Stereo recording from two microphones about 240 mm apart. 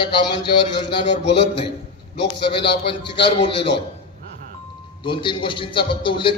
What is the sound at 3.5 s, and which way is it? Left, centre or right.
Speech, left.